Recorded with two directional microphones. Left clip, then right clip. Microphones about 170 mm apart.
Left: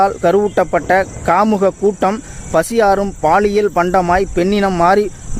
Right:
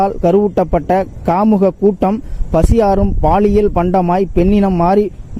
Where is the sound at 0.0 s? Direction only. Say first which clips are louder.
Even; 40° right (ahead or behind).